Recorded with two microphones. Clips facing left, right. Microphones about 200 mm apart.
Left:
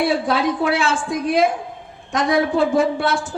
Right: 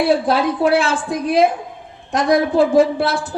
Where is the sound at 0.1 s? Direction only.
35° right (ahead or behind).